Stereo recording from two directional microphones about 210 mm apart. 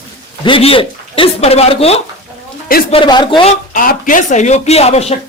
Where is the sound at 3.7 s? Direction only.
40° left (ahead or behind).